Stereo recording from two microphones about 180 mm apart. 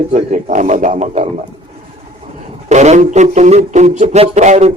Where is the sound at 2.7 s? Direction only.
40° right (ahead or behind).